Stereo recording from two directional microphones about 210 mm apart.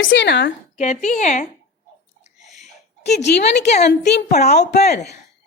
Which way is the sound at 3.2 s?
50° left (ahead or behind).